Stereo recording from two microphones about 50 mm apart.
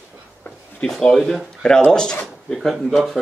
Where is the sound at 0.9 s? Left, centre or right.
Centre.